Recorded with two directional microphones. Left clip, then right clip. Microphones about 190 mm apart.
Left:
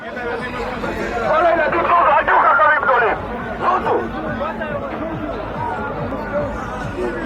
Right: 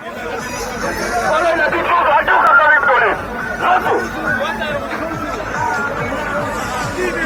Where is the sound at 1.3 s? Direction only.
55° right (ahead or behind).